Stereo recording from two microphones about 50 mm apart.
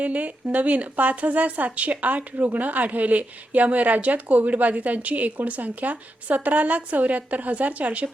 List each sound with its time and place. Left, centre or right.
0.0 s speech: right